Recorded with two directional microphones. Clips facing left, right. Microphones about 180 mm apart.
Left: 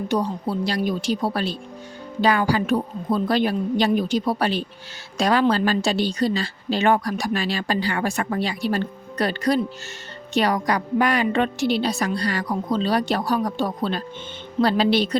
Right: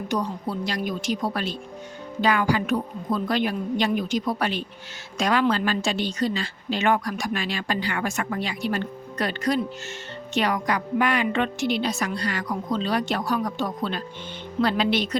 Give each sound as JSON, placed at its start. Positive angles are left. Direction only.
{"t": 0.1, "sound": "a woman's voice", "side_deg": 30}